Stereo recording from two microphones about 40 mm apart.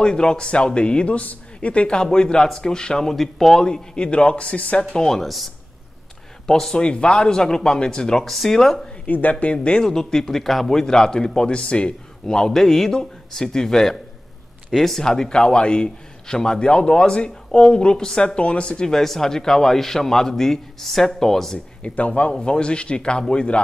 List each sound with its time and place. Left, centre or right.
0.0 s a man's voice: centre
3.2 s speech: centre
3.6 s a man's voice: left
4.9 s speech: centre
6.4 s speech: centre
6.8 s speech: left; by 8.7 s centre
9.0 s speech: left
9.8 s a man's voice: centre
21.8 s speech: left
22.3 s a man's voice: left